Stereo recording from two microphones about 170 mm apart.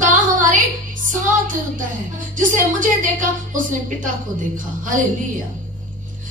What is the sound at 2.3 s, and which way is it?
A woman's voice, 50° right (ahead or behind).